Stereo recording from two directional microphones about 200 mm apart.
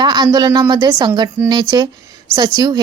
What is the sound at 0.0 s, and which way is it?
A woman's voice, 20° right (ahead or behind).